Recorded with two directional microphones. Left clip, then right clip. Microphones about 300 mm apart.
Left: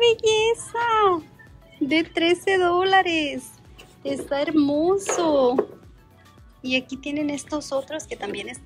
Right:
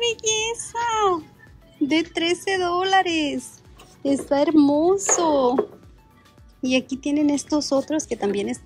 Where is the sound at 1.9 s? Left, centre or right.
Centre.